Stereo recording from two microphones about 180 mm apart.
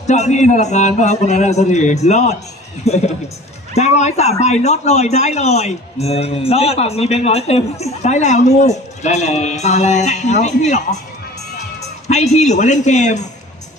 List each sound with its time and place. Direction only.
0.1 s speech: 40° left (ahead or behind)
12.0 s speech: 40° left (ahead or behind)